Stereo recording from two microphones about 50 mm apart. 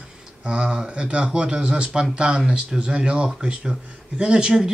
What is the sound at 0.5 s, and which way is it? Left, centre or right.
Speech, centre.